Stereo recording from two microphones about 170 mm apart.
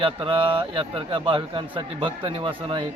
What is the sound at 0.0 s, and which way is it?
A man's voice, 30° right (ahead or behind).